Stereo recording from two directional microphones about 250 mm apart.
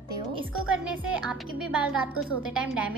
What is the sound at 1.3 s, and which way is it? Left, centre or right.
A woman's voice, centre.